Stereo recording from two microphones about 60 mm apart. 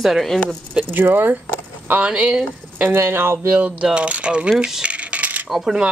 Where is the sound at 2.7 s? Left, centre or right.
Right.